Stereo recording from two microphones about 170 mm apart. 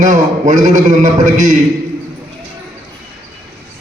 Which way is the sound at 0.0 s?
45° right (ahead or behind).